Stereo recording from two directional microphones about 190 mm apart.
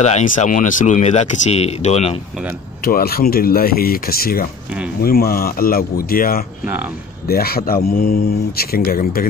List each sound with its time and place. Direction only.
0.0 s speech: 35° left (ahead or behind)
2.8 s speech: 50° left (ahead or behind)
6.6 s speech: 10° right (ahead or behind)
7.2 s speech: 55° left (ahead or behind)